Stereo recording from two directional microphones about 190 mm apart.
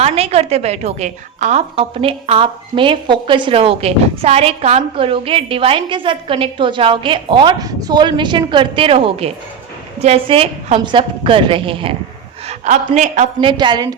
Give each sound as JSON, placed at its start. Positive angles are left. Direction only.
{"t": 0.0, "sound": "a woman's voice", "side_deg": -35}
{"t": 12.5, "sound": "a woman's voice", "side_deg": -40}
{"t": 13.5, "sound": "a woman's voice", "side_deg": -25}